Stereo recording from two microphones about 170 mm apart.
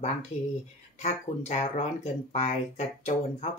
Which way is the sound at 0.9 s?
40° left (ahead or behind).